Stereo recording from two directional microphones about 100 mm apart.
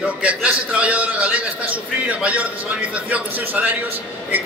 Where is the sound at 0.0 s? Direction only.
10° right (ahead or behind).